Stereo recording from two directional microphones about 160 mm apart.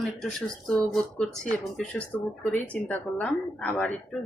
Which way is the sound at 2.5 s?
10° left (ahead or behind).